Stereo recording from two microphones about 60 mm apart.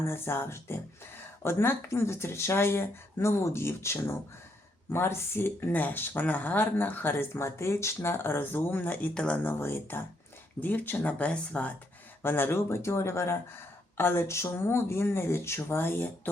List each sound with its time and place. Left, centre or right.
0.1 s speech: left; by 9.4 s centre
9.4 s speech: left
12.2 s speech: left